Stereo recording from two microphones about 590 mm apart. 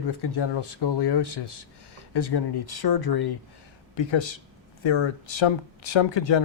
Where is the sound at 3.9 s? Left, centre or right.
Left.